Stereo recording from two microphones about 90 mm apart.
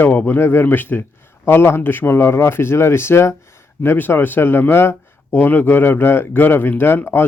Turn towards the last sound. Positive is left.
turn(degrees=25)  # may be behind; listen again after turning